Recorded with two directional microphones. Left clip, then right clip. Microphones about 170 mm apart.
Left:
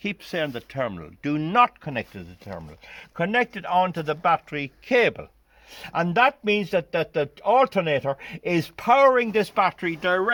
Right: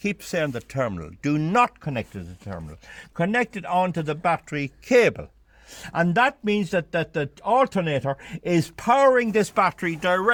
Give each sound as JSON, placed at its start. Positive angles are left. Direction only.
{"t": 0.0, "sound": "speech", "side_deg": -50}